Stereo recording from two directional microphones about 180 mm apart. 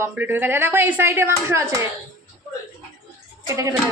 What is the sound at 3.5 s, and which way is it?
Speech, 20° right (ahead or behind).